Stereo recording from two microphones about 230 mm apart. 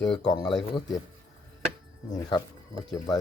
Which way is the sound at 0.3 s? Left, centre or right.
Centre.